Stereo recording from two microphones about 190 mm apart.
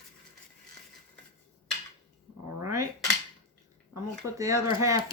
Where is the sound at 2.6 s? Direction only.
15° right (ahead or behind).